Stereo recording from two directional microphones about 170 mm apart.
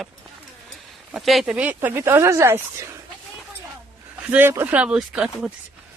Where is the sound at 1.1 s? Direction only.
Centre (ahead or behind).